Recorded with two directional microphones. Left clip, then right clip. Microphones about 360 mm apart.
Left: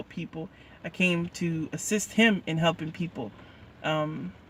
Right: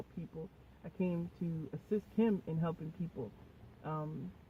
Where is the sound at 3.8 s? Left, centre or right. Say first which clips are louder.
Left 14 dB; left.